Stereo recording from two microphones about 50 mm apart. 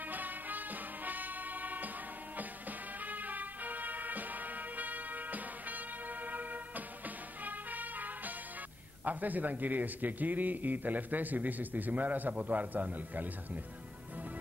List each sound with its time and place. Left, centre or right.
0.1 s music: right
3.1 s music: right
7.4 s brass instrument: right
9.0 s a man's voice: right